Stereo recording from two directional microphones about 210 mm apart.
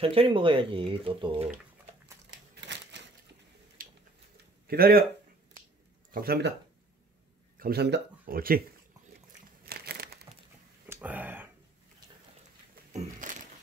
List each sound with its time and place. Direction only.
0.0 s speech: 25° right (ahead or behind)
2.5 s typewriter: 55° right (ahead or behind)
3.8 s a sound: 40° right (ahead or behind)
4.6 s speech: 45° right (ahead or behind)
6.1 s speech: 50° right (ahead or behind)
7.5 s speech: 45° right (ahead or behind)
9.7 s crumpling: 50° right (ahead or behind)
10.9 s a sound: 10° right (ahead or behind)
12.9 s a sound: 35° right (ahead or behind)